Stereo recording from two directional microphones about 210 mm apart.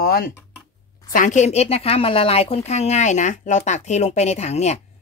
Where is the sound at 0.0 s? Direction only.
45° left (ahead or behind).